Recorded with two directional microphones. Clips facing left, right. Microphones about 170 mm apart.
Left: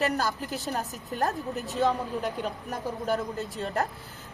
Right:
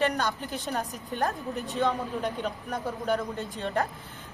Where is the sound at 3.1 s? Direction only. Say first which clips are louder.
Even; centre (ahead or behind).